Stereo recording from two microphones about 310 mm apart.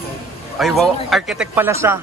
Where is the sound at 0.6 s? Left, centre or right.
Centre.